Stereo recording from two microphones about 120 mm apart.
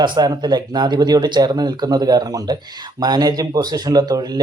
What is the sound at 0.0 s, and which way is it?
Speech, 35° right (ahead or behind).